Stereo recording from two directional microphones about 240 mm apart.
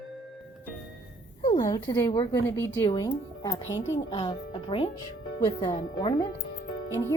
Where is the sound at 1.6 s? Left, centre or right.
Centre.